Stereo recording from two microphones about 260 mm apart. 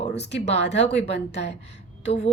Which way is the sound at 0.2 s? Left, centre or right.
Left.